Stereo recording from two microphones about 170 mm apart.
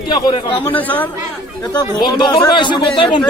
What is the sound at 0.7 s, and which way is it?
Speech, 10° left (ahead or behind).